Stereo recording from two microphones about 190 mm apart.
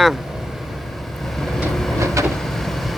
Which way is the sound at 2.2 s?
15° right (ahead or behind).